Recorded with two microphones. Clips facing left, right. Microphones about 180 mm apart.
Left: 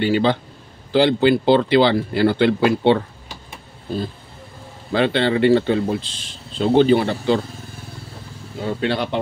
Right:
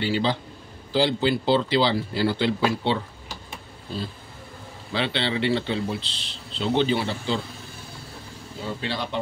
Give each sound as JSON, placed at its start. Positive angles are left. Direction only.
{"t": 0.0, "sound": "speech", "side_deg": 55}
{"t": 4.9, "sound": "speech", "side_deg": 50}
{"t": 8.5, "sound": "speech", "side_deg": 60}